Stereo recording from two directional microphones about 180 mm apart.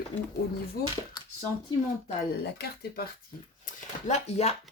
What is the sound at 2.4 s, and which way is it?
Speech, 60° left (ahead or behind).